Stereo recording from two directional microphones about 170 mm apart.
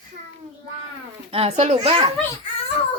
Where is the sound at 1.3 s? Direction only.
35° right (ahead or behind).